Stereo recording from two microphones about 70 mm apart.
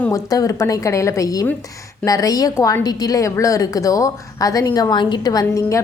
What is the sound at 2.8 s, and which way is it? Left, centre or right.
A woman's voice, left.